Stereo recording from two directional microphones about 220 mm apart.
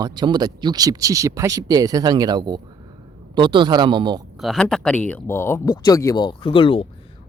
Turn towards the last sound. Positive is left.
turn(degrees=25)  # may be behind; listen again after turning